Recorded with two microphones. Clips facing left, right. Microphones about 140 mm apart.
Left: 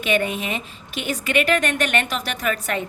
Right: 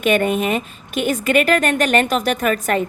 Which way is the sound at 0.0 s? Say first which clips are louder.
Right 6 dB; 50° right (ahead or behind).